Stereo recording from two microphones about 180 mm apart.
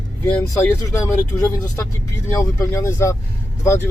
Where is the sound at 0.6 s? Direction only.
15° left (ahead or behind).